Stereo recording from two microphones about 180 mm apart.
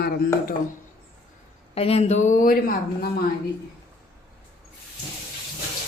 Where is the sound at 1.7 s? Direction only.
35° left (ahead or behind).